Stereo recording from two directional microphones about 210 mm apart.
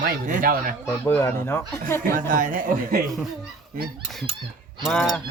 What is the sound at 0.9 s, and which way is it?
Speech, 10° left (ahead or behind).